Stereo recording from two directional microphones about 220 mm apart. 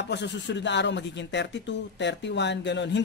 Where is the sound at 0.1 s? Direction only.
50° left (ahead or behind).